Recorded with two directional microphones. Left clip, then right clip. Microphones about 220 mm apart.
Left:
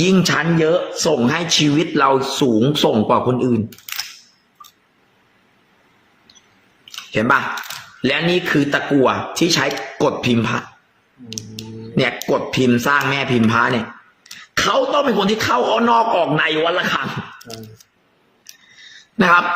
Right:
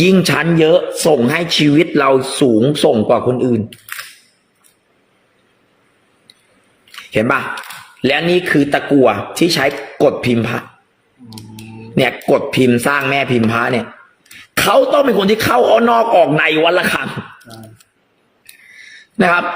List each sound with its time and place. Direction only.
0.0 s a man's voice: 15° right (ahead or behind)
7.1 s a man's voice: 10° right (ahead or behind)
11.9 s a man's voice: 15° right (ahead or behind)